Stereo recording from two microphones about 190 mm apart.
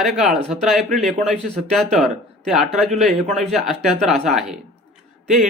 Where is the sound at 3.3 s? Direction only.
35° right (ahead or behind).